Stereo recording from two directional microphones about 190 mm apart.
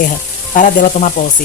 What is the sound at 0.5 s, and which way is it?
Speech, 45° left (ahead or behind).